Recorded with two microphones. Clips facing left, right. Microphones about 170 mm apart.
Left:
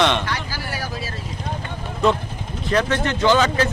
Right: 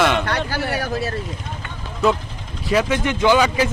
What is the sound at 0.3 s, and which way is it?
Vehicle, 60° right (ahead or behind).